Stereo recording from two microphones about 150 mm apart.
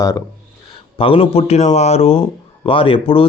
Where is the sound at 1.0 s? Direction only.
35° left (ahead or behind).